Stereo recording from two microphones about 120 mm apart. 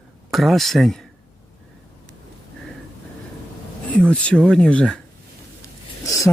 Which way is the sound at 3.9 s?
10° left (ahead or behind).